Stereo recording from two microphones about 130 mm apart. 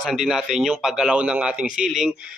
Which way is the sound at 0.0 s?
Centre (ahead or behind).